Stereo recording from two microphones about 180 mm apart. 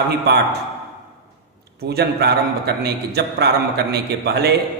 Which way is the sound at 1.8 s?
65° right (ahead or behind).